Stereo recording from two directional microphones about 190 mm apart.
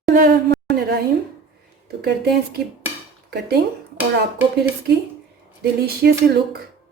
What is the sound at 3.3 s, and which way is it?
Speech, 60° right (ahead or behind).